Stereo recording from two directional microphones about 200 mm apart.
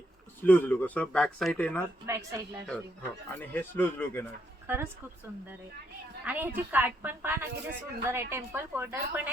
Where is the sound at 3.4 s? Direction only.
10° left (ahead or behind).